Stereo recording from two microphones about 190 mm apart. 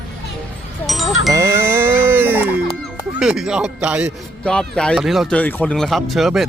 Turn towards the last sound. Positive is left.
turn(degrees=0)  # may be behind; listen again after turning